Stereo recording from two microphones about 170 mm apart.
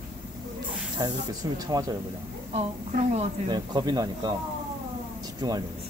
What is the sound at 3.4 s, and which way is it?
Speech, 25° right (ahead or behind).